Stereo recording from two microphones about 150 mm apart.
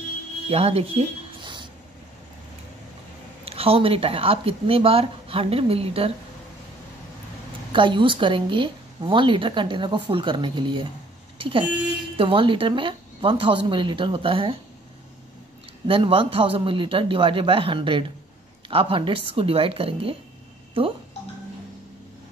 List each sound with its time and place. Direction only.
0.5 s a sound: 40° right (ahead or behind)
3.4 s a woman's voice: 40° right (ahead or behind)
7.7 s a woman's voice: 35° right (ahead or behind)
15.9 s a woman's voice: 35° right (ahead or behind)